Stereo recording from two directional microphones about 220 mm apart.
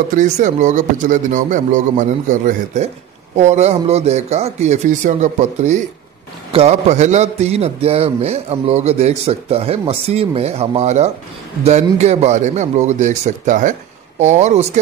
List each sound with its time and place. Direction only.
0.1 s a man's voice: 35° right (ahead or behind)